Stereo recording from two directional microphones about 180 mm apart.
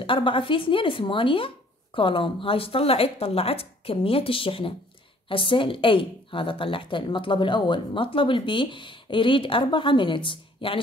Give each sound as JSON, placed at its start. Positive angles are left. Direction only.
{"t": 0.0, "sound": "a woman's voice", "side_deg": 30}